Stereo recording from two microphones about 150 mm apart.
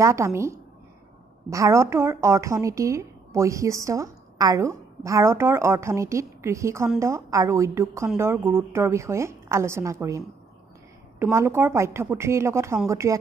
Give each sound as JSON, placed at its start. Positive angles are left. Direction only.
{"t": 0.0, "sound": "a woman's voice", "side_deg": -20}